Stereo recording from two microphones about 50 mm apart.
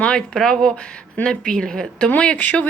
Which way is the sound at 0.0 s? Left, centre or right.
Left.